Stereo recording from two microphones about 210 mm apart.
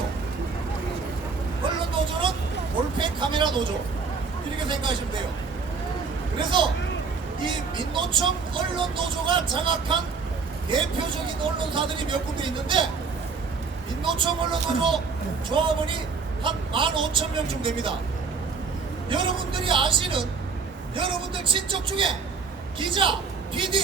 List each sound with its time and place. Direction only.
1.6 s vehicle: 25° right (ahead or behind)
3.0 s speech: 20° right (ahead or behind)
7.4 s speech: 25° right (ahead or behind)
14.0 s speech: 25° right (ahead or behind)
19.0 s speech: 25° right (ahead or behind)